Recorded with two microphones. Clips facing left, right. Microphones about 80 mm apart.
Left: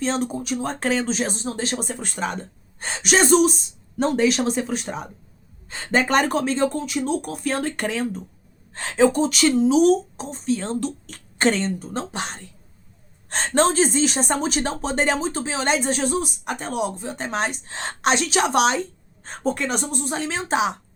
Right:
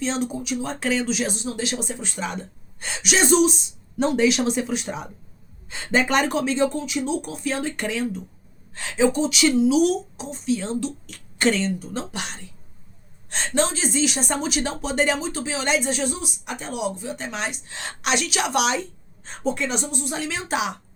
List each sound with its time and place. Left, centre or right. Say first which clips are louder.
0.0 s speech: left 2 dB; left